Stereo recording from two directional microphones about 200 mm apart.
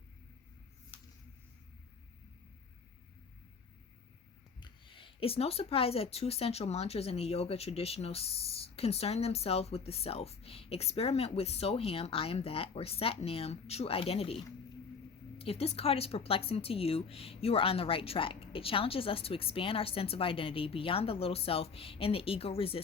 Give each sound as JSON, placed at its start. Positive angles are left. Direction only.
{"t": 4.6, "sound": "speech", "side_deg": 25}